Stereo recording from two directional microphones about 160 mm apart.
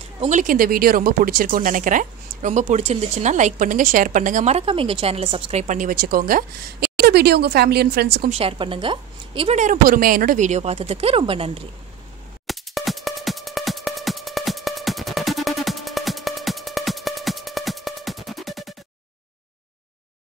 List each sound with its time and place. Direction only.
0.2 s speech: 50° right (ahead or behind); by 8.3 s 80° right
8.3 s speech: 35° right (ahead or behind)
9.6 s speech: 60° right (ahead or behind); by 11.5 s 35° right (ahead or behind)
12.4 s music: centre (ahead or behind)